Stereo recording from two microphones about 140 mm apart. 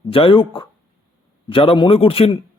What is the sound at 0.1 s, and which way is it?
A man's voice, 40° left (ahead or behind).